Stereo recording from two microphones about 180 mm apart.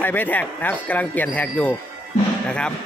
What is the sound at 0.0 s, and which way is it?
A man's voice, 10° left (ahead or behind).